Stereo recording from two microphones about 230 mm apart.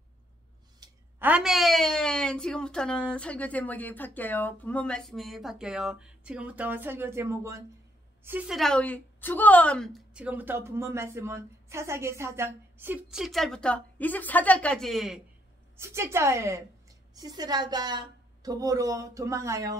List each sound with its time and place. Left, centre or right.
0.7 s a woman's voice: centre
15.8 s a woman's voice: centre